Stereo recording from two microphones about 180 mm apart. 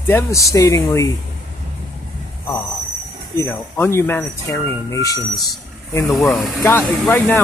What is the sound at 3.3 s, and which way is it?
Speech, 15° left (ahead or behind).